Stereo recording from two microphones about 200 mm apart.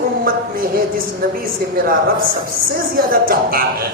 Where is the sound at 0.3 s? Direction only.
45° right (ahead or behind).